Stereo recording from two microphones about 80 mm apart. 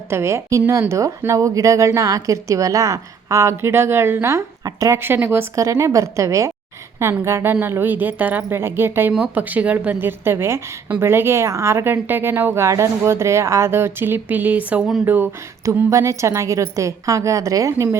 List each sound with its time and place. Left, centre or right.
0.1 s a woman's voice: right
5.5 s a woman's voice: right
15.9 s a woman's voice: right